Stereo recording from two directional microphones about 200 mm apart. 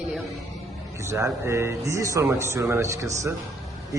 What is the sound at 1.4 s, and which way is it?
A man's voice, 15° right (ahead or behind).